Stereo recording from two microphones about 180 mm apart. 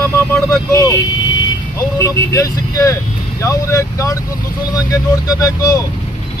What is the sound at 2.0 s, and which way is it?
Speech, 15° left (ahead or behind).